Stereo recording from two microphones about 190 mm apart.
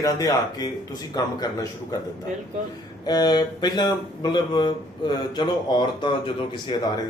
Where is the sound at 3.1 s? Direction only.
20° left (ahead or behind).